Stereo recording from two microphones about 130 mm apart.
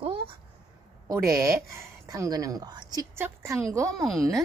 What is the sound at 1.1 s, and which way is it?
A woman's voice, 25° right (ahead or behind).